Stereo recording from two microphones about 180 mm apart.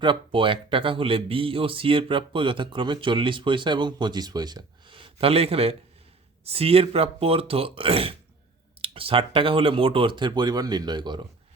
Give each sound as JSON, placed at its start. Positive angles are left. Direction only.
{"t": 0.0, "sound": "speech", "side_deg": -30}